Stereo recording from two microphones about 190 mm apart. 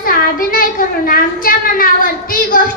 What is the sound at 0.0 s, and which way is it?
Child singing, 50° left (ahead or behind).